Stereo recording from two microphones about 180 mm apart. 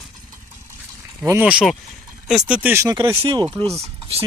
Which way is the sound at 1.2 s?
10° right (ahead or behind).